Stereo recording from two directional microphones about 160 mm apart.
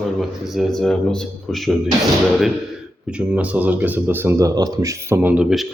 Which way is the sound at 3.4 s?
10° right (ahead or behind).